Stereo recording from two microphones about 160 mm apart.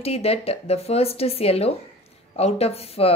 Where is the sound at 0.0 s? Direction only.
40° left (ahead or behind).